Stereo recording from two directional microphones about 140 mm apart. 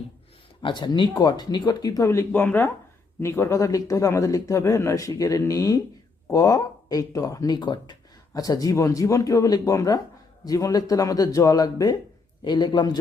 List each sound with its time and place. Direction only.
0.6 s a man's voice: 35° left (ahead or behind)